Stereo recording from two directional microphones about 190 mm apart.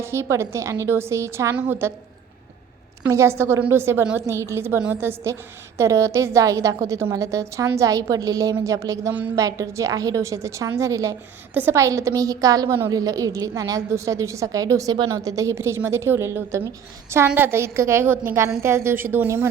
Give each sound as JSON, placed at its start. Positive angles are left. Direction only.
{"t": 0.0, "sound": "a woman's voice", "side_deg": -15}
{"t": 3.0, "sound": "a woman's voice", "side_deg": -15}